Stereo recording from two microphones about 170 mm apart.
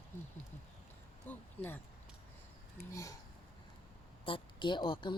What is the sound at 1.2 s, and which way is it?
Speech, 10° left (ahead or behind).